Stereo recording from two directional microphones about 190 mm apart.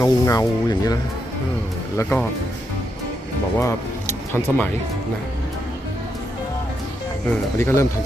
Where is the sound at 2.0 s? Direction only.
10° left (ahead or behind).